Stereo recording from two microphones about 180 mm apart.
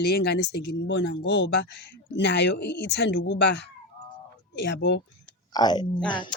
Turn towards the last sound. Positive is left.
turn(degrees=25)  # may be behind; listen again after turning